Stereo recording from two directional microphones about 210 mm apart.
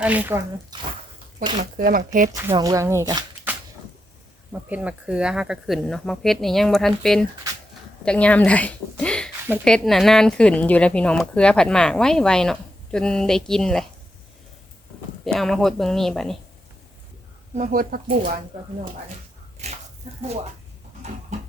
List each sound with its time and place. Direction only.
0.0 s speech: 5° right (ahead or behind)
1.5 s speech: 40° right (ahead or behind)
2.5 s speech: 20° right (ahead or behind)
4.5 s speech: 5° right (ahead or behind)
15.2 s speech: centre (ahead or behind)
17.5 s speech: 40° right (ahead or behind)
20.2 s speech: 30° right (ahead or behind)